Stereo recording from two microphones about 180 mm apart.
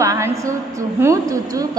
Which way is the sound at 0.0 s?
20° right (ahead or behind).